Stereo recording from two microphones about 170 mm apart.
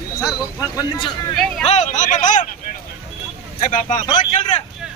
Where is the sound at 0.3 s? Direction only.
25° left (ahead or behind).